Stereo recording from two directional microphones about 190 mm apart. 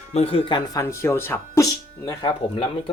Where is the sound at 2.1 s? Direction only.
25° left (ahead or behind).